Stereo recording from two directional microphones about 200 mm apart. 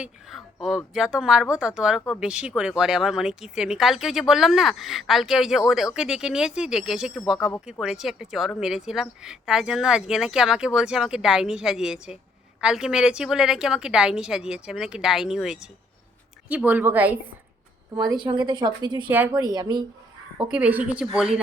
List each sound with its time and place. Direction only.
0.0 s a woman's voice: centre (ahead or behind)
17.9 s a woman's voice: 20° right (ahead or behind)
19.0 s a woman's voice: 10° right (ahead or behind)
19.3 s a woman's voice: 20° right (ahead or behind)
20.5 s speech: 5° right (ahead or behind)